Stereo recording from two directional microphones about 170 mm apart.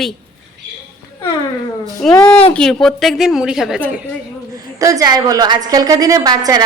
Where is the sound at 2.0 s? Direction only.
5° left (ahead or behind).